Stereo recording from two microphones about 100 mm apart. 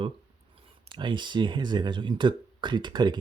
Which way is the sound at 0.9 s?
50° right (ahead or behind).